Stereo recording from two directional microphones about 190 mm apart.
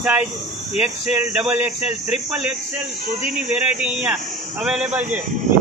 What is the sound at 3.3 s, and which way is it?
A man's voice, 5° right (ahead or behind).